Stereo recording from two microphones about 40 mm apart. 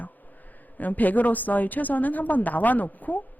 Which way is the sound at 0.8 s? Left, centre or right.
Left.